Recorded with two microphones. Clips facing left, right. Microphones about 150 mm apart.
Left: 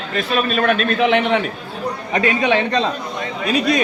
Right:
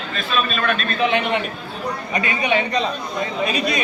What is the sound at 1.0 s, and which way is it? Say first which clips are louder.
Speech: left 3 dB; 90° left.